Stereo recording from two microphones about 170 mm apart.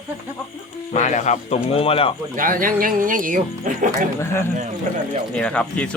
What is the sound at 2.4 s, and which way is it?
Speech, 55° right (ahead or behind).